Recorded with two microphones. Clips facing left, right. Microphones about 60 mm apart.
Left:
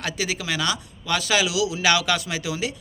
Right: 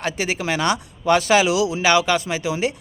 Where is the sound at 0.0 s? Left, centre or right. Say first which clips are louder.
Right 4 dB; right.